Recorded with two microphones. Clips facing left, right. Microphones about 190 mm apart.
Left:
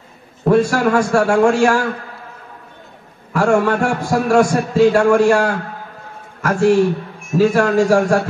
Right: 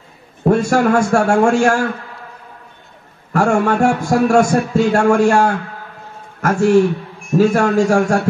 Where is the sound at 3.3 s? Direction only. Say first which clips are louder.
Even; 50° right (ahead or behind).